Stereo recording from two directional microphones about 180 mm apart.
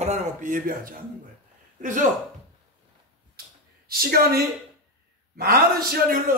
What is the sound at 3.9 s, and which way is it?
A man's voice, 55° right (ahead or behind).